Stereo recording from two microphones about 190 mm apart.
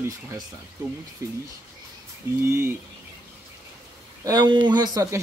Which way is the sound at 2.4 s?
15° right (ahead or behind).